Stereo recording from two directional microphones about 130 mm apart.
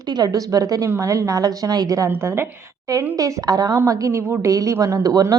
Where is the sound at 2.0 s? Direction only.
20° right (ahead or behind).